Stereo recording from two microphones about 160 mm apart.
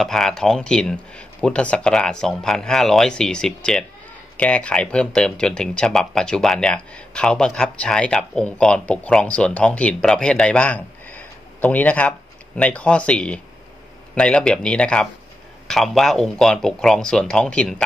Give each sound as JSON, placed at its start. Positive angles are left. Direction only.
{"t": 0.0, "sound": "speech", "side_deg": 0}